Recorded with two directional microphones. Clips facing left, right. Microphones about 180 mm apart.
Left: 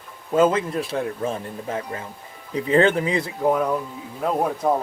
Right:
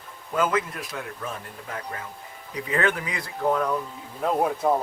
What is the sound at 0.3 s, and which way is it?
Speech, 25° left (ahead or behind).